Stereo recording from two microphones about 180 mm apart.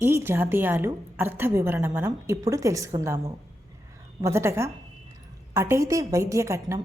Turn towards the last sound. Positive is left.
turn(degrees=-15)  # may be behind; listen again after turning